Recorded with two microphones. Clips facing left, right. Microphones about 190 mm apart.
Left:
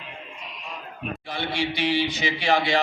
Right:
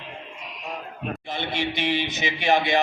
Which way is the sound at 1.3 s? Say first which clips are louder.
Left 1 dB; 20° right (ahead or behind).